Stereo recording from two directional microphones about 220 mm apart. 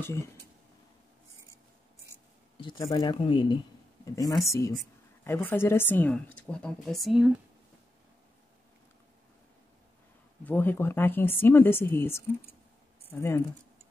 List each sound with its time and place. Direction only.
2.5 s speech: 20° left (ahead or behind); by 7.2 s centre (ahead or behind)
10.4 s speech: 10° left (ahead or behind)